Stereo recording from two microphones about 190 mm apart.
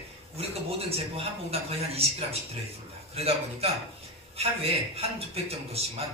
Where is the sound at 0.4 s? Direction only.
30° right (ahead or behind).